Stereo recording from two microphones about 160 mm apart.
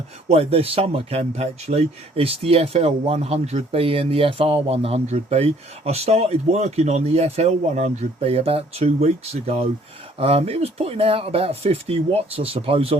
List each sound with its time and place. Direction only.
0.3 s speech: 40° right (ahead or behind)